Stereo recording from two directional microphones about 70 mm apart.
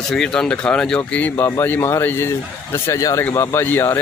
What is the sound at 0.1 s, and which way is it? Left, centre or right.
Speech, centre.